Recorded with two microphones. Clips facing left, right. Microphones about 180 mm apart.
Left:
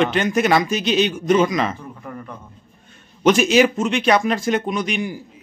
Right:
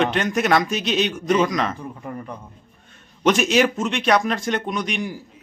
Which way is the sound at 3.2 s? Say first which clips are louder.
Left 3 dB; centre (ahead or behind).